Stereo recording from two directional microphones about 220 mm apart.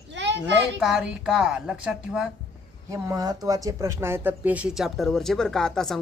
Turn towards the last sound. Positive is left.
turn(degrees=0)  # may be behind; listen again after turning